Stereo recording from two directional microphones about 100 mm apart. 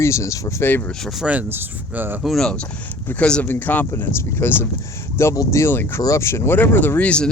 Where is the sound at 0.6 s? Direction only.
20° left (ahead or behind).